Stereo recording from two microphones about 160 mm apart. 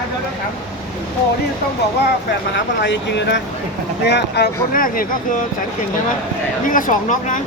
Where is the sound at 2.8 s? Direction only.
90° left; by 5.0 s 60° left (ahead or behind).